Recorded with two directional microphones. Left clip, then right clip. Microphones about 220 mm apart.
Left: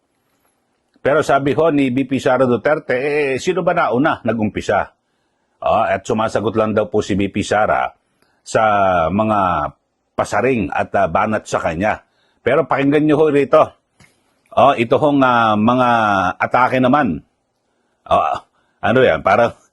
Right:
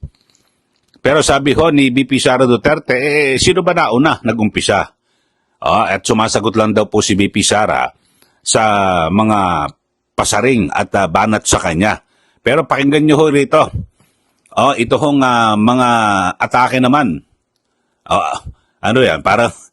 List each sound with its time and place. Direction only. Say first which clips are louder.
0.9 s a man's voice: right 3 dB; 45° right (ahead or behind)